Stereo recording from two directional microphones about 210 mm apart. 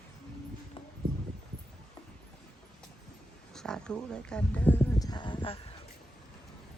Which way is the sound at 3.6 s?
5° left (ahead or behind).